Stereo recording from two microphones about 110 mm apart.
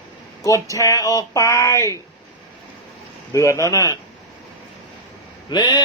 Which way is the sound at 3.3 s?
25° left (ahead or behind).